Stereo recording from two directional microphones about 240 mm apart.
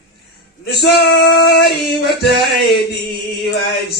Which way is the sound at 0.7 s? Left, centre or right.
Left.